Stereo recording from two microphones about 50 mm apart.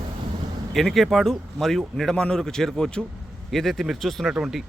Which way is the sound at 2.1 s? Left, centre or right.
Centre.